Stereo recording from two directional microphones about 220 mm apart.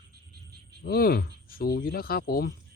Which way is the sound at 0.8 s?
45° left (ahead or behind).